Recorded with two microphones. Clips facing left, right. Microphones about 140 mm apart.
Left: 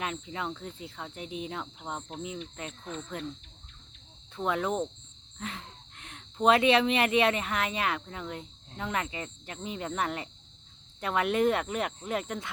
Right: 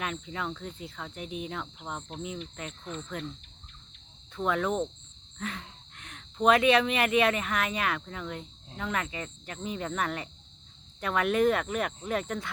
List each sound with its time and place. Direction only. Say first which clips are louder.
0.0 s cricket: even; 25° left (ahead or behind)
4.4 s cricket: right 1 dB; 20° left (ahead or behind)
5.4 s speech: right 2 dB; 25° left (ahead or behind)
11.0 s cricket: right 1 dB; 25° left (ahead or behind)